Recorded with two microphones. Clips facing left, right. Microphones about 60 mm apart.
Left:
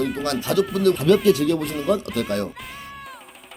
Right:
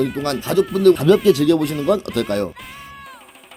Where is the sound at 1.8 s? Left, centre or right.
Right.